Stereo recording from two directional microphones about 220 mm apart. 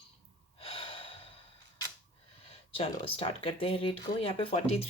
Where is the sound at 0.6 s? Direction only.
25° left (ahead or behind).